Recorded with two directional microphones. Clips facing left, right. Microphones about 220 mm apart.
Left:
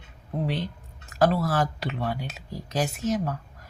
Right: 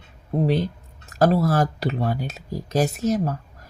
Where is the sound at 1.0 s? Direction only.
40° right (ahead or behind).